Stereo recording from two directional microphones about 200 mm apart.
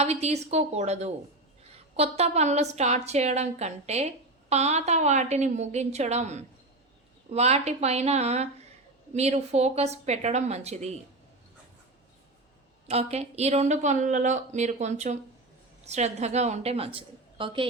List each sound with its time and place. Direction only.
0.0 s a woman's voice: 30° right (ahead or behind)
12.9 s a woman's voice: 30° right (ahead or behind)